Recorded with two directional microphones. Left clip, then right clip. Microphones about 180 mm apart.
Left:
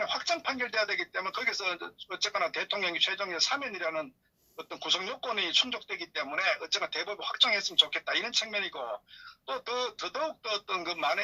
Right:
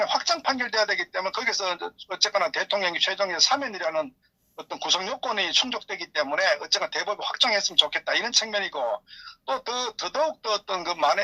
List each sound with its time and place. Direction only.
0.0 s speech: 30° right (ahead or behind)